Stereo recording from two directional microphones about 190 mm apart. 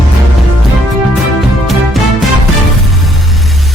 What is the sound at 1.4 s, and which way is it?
Music, centre (ahead or behind).